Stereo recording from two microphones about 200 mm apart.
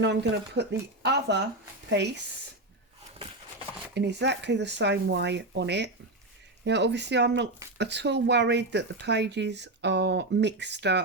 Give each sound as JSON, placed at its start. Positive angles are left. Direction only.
{"t": 0.0, "sound": "speech", "side_deg": -60}
{"t": 3.9, "sound": "speech", "side_deg": -60}